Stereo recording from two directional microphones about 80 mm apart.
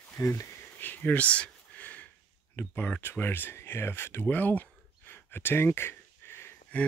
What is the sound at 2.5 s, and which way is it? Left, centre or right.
Speech, left.